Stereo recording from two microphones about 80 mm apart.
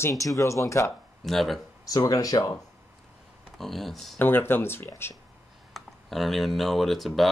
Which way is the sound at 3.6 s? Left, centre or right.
Centre.